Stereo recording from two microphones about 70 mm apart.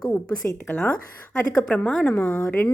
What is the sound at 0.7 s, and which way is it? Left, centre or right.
A woman's voice, centre.